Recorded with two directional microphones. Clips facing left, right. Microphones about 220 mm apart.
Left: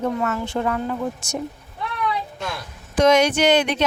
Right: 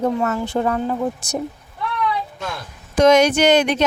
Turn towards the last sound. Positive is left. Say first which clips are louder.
# right 3 dB
turn(degrees=-45)  # may be behind; listen again after turning